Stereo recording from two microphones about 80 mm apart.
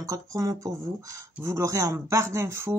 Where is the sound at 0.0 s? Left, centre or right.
Right.